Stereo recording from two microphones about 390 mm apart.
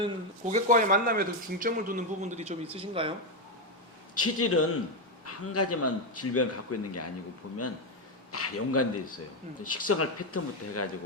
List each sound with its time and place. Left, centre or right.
0.0 s speech: centre
4.1 s speech: left
8.3 s speech: left